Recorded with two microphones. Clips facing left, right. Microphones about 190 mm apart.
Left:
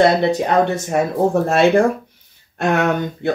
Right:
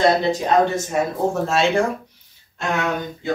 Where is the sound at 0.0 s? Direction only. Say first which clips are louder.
Left 3 dB; 65° left (ahead or behind).